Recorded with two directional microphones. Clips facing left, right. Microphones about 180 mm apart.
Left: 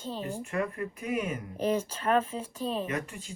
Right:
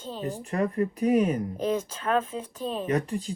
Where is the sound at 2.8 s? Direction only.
35° right (ahead or behind).